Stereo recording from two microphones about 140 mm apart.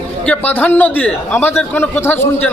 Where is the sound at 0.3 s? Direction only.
10° left (ahead or behind).